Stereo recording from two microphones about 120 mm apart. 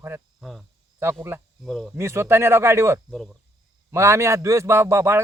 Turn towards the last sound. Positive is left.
turn(degrees=-20)  # may be behind; listen again after turning